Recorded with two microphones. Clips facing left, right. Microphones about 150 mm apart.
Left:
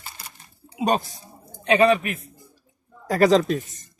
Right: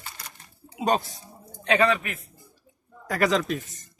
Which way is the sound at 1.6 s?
20° left (ahead or behind).